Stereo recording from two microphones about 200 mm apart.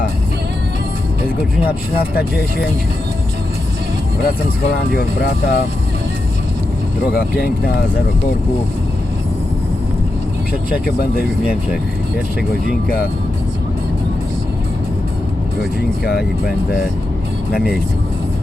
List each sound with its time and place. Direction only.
1.6 s speech: 50° left (ahead or behind)
4.9 s speech: 50° left (ahead or behind)
7.1 s speech: 50° left (ahead or behind)
10.7 s speech: 50° left (ahead or behind)
16.0 s speech: 50° left (ahead or behind)